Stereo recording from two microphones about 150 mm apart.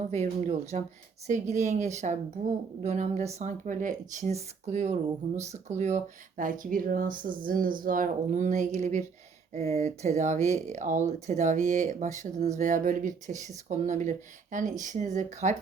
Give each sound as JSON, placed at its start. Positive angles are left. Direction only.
{"t": 0.1, "sound": "speech", "side_deg": -50}